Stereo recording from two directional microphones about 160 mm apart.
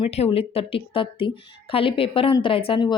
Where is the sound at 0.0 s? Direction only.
35° left (ahead or behind).